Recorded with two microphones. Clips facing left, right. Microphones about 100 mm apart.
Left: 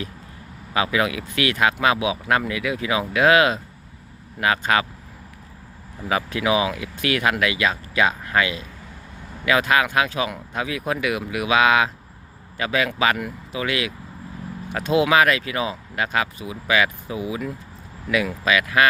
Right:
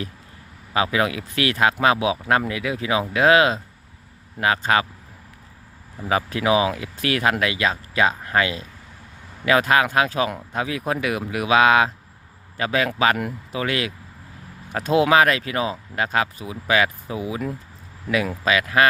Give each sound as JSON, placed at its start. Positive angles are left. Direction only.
{"t": 0.7, "sound": "speech", "side_deg": -30}
{"t": 6.1, "sound": "speech", "side_deg": -35}